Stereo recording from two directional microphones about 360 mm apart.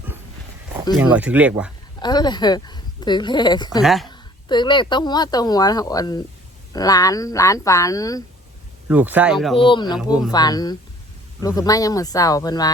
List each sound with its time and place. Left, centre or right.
0.9 s speech: centre
2.0 s speech: centre
3.8 s speech: centre
4.1 s speech: centre
8.9 s speech: centre
9.6 s speech: centre
10.0 s speech: centre
10.3 s speech: centre